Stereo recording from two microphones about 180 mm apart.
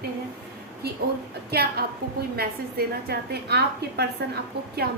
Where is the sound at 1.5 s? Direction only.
60° right (ahead or behind).